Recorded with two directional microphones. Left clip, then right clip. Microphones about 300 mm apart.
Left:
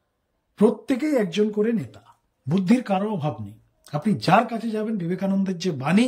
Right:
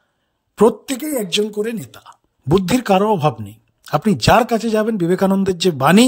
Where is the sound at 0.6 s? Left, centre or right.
Centre.